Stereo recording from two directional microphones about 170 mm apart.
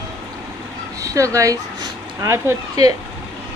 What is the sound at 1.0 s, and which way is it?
Speech, 20° right (ahead or behind).